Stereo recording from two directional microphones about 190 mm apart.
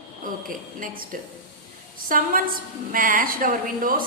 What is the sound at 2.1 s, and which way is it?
A woman's voice, 50° right (ahead or behind).